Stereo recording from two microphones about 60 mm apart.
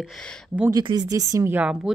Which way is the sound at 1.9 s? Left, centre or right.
Centre.